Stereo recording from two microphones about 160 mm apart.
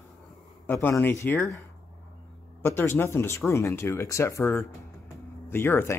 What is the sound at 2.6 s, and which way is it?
Speech, 15° left (ahead or behind).